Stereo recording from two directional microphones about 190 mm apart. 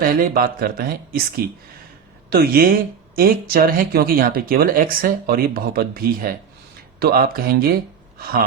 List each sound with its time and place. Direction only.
0.0 s speech: 50° right (ahead or behind)